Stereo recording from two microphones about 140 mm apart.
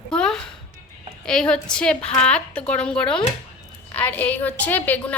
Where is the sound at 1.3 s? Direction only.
5° left (ahead or behind).